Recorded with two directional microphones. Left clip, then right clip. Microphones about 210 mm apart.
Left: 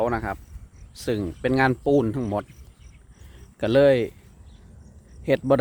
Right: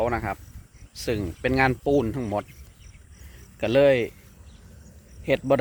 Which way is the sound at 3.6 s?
30° left (ahead or behind).